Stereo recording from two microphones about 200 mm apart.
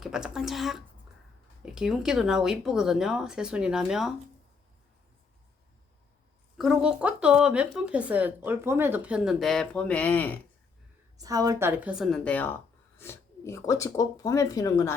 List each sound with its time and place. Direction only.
0.0 s speech: centre (ahead or behind)
6.6 s speech: 5° right (ahead or behind)
11.2 s speech: 20° right (ahead or behind); by 14.9 s 15° left (ahead or behind)